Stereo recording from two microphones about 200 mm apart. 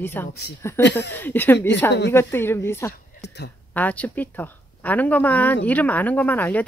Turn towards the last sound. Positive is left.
turn(degrees=10)  # may be behind; listen again after turning